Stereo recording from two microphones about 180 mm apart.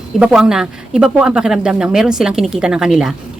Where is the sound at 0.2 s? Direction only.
5° right (ahead or behind).